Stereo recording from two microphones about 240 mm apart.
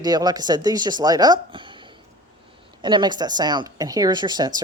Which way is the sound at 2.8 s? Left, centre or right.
Centre.